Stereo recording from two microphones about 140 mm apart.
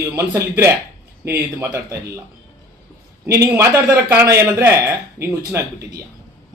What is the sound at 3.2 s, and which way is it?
A man's voice, 20° right (ahead or behind).